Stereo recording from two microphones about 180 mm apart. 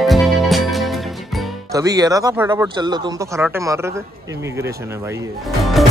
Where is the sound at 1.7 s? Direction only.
20° right (ahead or behind).